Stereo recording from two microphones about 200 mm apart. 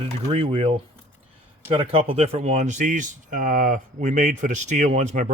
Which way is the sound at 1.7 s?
30° right (ahead or behind).